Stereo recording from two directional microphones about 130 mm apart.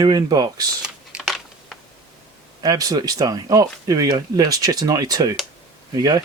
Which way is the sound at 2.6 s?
30° right (ahead or behind).